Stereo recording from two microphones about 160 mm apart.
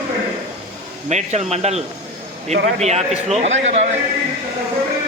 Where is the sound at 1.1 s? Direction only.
45° right (ahead or behind).